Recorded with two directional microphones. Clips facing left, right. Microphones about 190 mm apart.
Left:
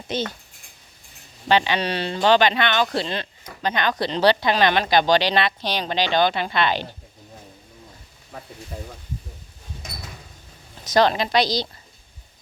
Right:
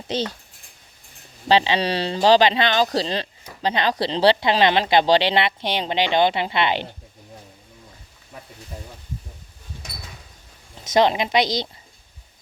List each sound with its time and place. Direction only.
1.5 s speech: 30° right (ahead or behind)
10.8 s speech: 25° right (ahead or behind)